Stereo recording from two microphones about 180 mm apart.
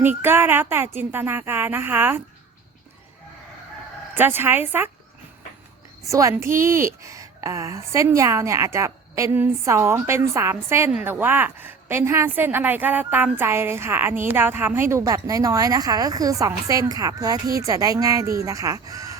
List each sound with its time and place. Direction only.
0.0 s a woman's voice: 10° right (ahead or behind)
4.1 s a woman's voice: 10° right (ahead or behind)
6.1 s a woman's voice: 15° right (ahead or behind)